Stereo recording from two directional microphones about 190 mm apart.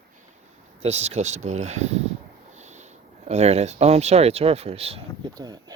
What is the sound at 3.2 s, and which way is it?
Speech, 35° right (ahead or behind).